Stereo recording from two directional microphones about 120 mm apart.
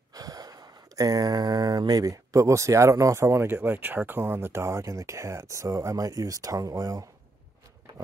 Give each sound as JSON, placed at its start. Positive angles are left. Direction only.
{"t": 0.1, "sound": "speech", "side_deg": -30}